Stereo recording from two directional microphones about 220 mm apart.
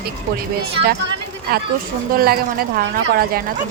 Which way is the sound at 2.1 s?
45° right (ahead or behind).